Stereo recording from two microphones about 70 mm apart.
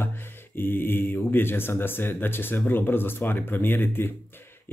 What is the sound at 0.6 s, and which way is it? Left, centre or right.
Speech, left.